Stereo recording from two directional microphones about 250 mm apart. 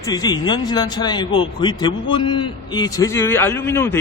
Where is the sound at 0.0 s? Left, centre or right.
Centre.